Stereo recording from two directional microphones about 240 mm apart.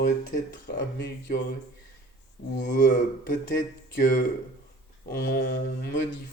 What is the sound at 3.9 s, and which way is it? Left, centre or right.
Speech, left.